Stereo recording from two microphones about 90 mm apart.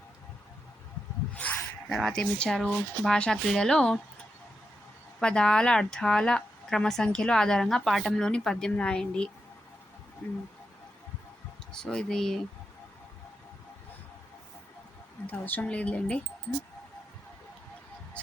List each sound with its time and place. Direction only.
1.3 s a sound: 15° left (ahead or behind)
1.9 s a woman's voice: centre (ahead or behind)
5.2 s a woman's voice: 10° left (ahead or behind)
11.7 s a woman's voice: 10° left (ahead or behind)
15.3 s a woman's voice: 20° left (ahead or behind)